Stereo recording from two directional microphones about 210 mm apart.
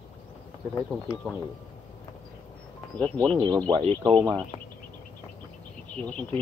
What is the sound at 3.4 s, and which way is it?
Speech, 20° right (ahead or behind).